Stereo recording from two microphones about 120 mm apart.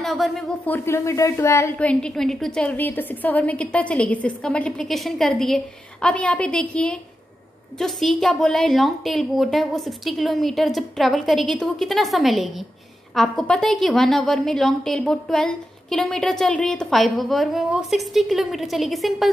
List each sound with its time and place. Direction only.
0.0 s speech: centre (ahead or behind)
0.7 s speech: 20° left (ahead or behind)
1.8 s a woman's voice: 10° left (ahead or behind)